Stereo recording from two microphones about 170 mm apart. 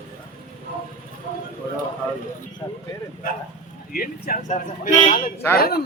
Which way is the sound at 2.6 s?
20° left (ahead or behind).